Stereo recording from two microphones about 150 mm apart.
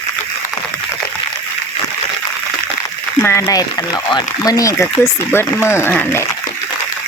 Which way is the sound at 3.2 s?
20° left (ahead or behind).